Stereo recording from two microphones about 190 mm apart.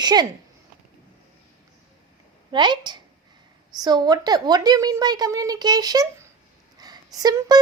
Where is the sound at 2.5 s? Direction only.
25° right (ahead or behind).